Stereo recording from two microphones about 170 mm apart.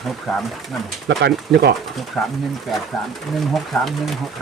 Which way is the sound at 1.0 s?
90° right.